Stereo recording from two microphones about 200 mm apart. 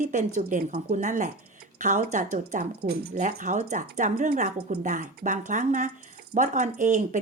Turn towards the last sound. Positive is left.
turn(degrees=-40)  # may be behind; listen again after turning